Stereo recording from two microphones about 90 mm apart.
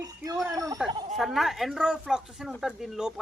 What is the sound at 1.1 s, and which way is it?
Speech, centre (ahead or behind).